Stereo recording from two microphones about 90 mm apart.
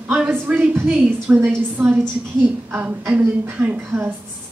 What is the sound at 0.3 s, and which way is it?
A woman's voice, 15° right (ahead or behind).